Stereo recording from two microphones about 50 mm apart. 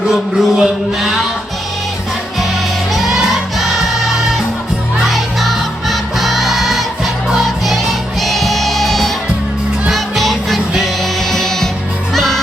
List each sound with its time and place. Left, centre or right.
0.1 s a sound: centre
2.9 s music: centre
5.0 s music: centre